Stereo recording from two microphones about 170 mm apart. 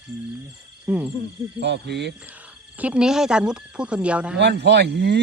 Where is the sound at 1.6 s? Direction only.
80° right.